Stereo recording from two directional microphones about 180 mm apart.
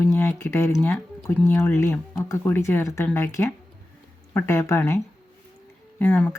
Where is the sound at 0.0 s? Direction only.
15° left (ahead or behind).